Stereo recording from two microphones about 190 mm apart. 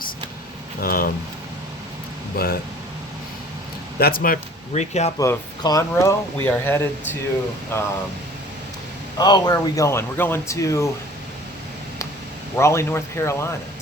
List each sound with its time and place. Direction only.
0.8 s speech: 50° left (ahead or behind)
2.3 s speech: 50° left (ahead or behind)
4.0 s speech: 50° left (ahead or behind)
4.7 s speech: 35° left (ahead or behind)
5.2 s speech: 15° left (ahead or behind)
9.1 s speech: 20° left (ahead or behind)
12.5 s speech: 15° left (ahead or behind)